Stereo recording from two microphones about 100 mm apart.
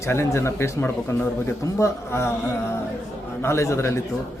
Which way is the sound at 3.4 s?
25° left (ahead or behind).